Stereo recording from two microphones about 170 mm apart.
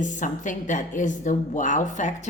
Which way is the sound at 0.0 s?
45° left (ahead or behind).